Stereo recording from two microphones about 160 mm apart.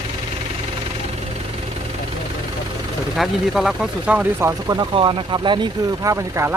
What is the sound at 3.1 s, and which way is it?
Speech, centre (ahead or behind).